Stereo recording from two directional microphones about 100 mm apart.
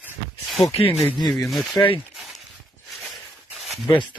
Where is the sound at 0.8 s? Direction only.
20° left (ahead or behind).